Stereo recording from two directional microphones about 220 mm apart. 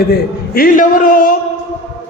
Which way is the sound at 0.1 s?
40° left (ahead or behind).